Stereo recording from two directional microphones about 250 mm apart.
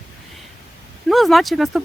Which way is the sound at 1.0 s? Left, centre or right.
Centre.